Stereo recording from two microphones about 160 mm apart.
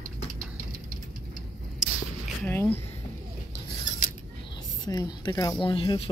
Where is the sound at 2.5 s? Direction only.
10° left (ahead or behind).